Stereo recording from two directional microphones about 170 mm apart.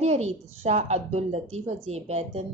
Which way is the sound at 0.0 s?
40° right (ahead or behind).